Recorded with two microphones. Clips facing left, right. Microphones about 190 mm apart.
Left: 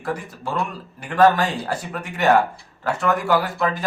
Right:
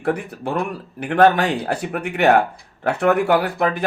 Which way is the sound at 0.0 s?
60° right (ahead or behind).